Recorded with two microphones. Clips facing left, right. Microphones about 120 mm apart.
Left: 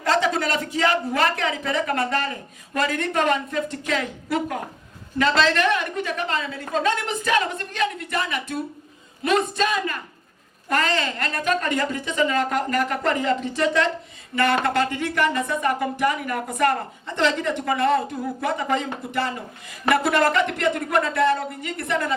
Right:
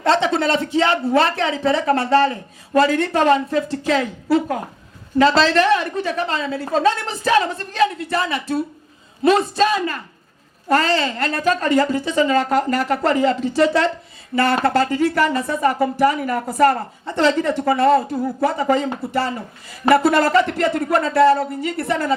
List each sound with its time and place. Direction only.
0.0 s speech: 30° right (ahead or behind)